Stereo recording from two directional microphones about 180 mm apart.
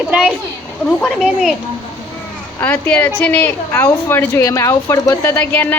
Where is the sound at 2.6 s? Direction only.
10° left (ahead or behind).